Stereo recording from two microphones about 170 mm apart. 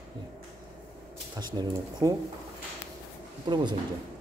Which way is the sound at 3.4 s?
25° right (ahead or behind).